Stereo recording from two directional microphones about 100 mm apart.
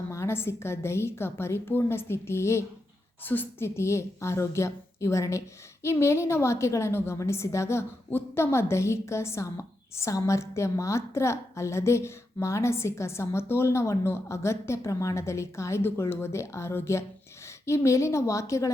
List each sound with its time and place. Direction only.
0.1 s a woman's voice: 25° left (ahead or behind)